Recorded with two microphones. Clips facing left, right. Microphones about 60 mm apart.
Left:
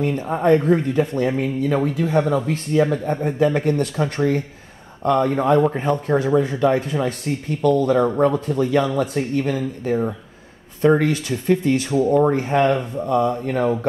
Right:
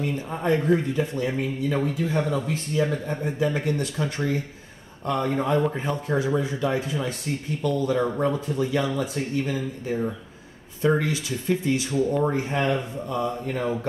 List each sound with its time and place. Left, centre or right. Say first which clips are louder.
0.0 s a man's voice: left 7 dB; left